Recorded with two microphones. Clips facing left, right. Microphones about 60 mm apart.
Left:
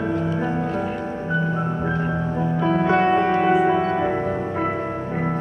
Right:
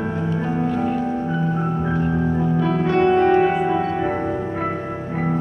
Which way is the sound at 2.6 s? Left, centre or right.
Left.